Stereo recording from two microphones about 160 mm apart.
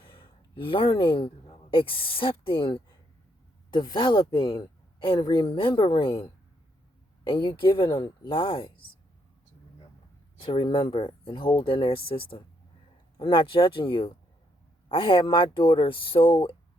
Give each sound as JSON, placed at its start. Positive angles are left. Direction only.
{"t": 0.0, "sound": "a sound", "side_deg": 35}
{"t": 1.7, "sound": "speech", "side_deg": 35}
{"t": 7.3, "sound": "speech", "side_deg": 30}
{"t": 10.4, "sound": "speech", "side_deg": 30}